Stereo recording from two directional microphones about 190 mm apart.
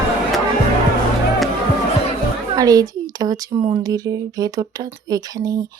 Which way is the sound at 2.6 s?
20° right (ahead or behind).